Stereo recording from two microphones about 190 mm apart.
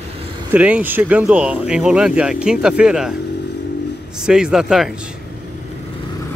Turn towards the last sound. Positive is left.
turn(degrees=-5)  # may be behind; listen again after turning